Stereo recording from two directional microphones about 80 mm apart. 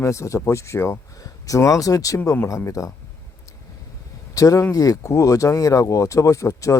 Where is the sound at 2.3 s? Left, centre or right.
Left.